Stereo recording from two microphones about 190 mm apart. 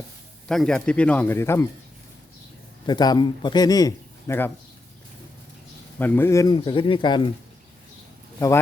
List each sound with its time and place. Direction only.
0.4 s speech: 5° left (ahead or behind)
2.8 s a man's voice: 20° left (ahead or behind)
6.0 s a man's voice: 10° left (ahead or behind); by 7.3 s 25° left (ahead or behind)
8.4 s speech: 15° left (ahead or behind)